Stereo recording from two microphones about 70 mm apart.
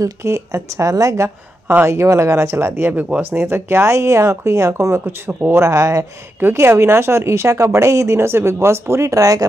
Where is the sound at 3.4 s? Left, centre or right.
Right.